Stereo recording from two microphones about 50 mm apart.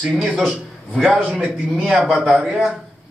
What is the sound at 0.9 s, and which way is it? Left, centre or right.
Speech, centre.